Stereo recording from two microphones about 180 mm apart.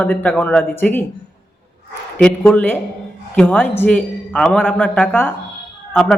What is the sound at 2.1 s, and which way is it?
A man's voice, 5° left (ahead or behind).